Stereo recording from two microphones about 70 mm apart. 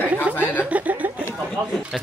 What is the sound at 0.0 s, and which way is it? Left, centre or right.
Chuckle, right.